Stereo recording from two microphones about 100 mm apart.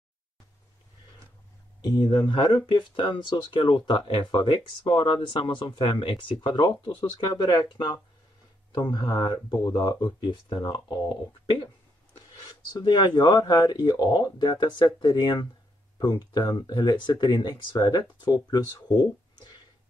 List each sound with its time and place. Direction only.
1.8 s speech: 45° left (ahead or behind)
12.8 s speech: 45° left (ahead or behind)